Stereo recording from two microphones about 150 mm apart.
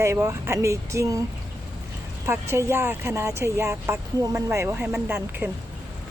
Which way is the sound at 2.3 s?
15° right (ahead or behind).